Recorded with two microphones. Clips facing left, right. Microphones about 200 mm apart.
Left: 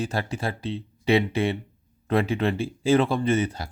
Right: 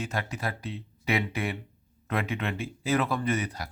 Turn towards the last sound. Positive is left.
turn(degrees=25)  # may be behind; listen again after turning